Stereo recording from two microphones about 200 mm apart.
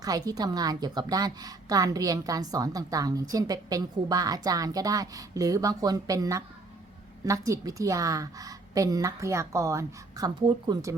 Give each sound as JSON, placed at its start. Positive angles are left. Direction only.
{"t": 0.0, "sound": "a woman's voice", "side_deg": -20}